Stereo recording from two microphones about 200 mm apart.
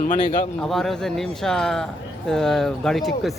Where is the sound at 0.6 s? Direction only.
Centre (ahead or behind).